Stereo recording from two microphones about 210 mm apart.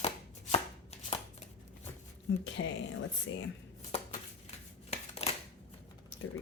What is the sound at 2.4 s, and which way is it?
Speech, 65° left (ahead or behind).